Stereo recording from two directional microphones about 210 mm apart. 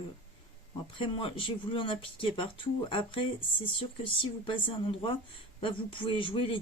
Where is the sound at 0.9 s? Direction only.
25° left (ahead or behind).